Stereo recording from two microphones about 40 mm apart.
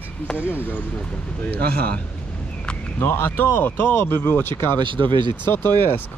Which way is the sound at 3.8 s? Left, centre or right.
Left.